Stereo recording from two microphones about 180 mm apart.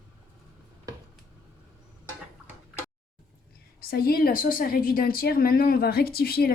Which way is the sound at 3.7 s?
60° left (ahead or behind).